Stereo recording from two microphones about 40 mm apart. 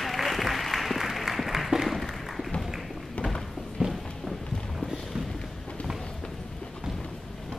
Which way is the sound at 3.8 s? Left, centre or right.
Centre.